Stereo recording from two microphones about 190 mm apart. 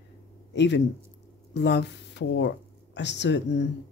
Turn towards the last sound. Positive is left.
turn(degrees=65)  # may be behind; listen again after turning